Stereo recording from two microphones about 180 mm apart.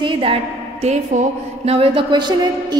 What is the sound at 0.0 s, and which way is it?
A woman's voice, 30° right (ahead or behind).